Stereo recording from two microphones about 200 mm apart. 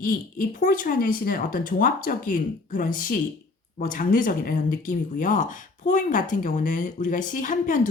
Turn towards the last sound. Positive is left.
turn(degrees=40)  # may be behind; listen again after turning